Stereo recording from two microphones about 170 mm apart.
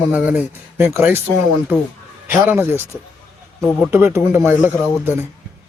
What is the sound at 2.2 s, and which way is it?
Speech, 10° right (ahead or behind).